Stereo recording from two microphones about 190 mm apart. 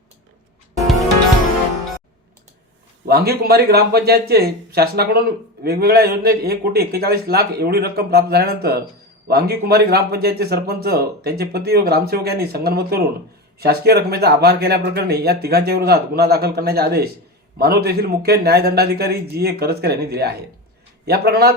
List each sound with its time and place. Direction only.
3.1 s speech: 55° right (ahead or behind)